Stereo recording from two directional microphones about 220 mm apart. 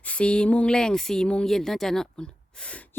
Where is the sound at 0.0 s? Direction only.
5° left (ahead or behind).